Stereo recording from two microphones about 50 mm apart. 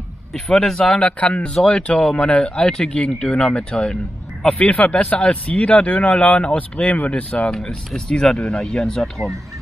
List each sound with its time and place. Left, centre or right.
0.3 s speech: centre
7.5 s speech: centre